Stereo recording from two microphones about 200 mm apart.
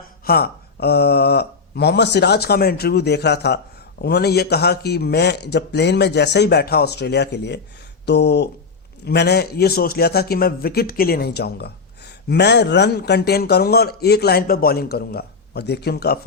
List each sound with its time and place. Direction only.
0.3 s a man's voice: 50° left (ahead or behind)